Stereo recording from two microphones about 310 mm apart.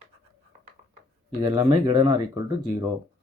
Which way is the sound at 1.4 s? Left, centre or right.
Centre.